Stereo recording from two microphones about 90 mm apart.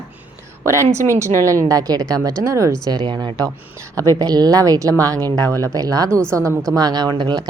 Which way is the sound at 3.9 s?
40° right (ahead or behind).